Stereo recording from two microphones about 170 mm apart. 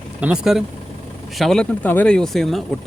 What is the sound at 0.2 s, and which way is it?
Speech, 5° right (ahead or behind).